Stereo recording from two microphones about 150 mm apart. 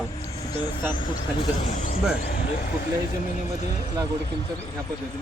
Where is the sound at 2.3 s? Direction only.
60° left (ahead or behind).